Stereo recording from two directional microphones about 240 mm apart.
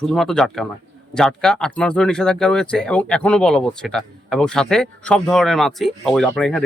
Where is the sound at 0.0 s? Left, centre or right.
Centre.